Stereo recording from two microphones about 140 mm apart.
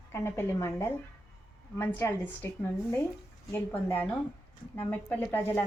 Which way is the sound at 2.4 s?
20° left (ahead or behind).